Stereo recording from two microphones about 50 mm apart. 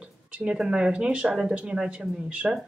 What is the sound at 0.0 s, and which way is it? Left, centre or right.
Speech, right.